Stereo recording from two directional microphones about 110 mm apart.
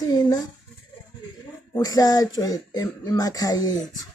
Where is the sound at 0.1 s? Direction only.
35° left (ahead or behind).